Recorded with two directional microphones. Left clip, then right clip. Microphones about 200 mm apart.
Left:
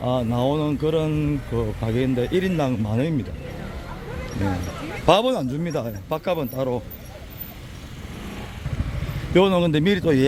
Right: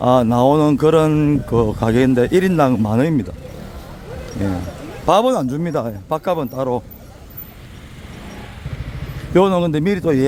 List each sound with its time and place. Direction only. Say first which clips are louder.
0.0 s speech: right 9 dB; 35° right (ahead or behind)
5.0 s speech: right 4 dB; 20° right (ahead or behind)
9.3 s speech: right 3 dB; 10° right (ahead or behind)